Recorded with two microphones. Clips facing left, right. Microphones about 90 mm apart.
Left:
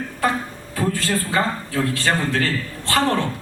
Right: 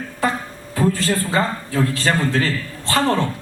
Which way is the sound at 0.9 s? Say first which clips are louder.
Right 2 dB; 20° right (ahead or behind).